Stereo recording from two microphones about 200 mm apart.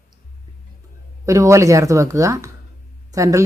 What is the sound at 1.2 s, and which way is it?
A woman's voice, 15° right (ahead or behind).